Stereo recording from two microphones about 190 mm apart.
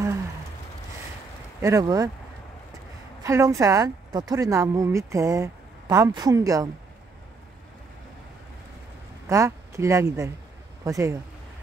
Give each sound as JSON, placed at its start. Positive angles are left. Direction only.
{"t": 1.6, "sound": "speech", "side_deg": -15}
{"t": 3.3, "sound": "speech", "side_deg": -15}
{"t": 9.3, "sound": "speech", "side_deg": -15}